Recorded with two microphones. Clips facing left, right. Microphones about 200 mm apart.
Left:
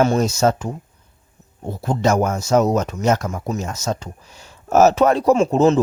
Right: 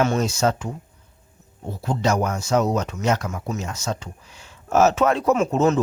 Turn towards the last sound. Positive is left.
turn(degrees=30)  # may be behind; listen again after turning